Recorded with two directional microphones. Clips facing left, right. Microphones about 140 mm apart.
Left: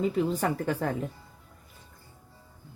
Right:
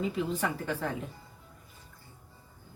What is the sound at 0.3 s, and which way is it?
Speech, 45° left (ahead or behind).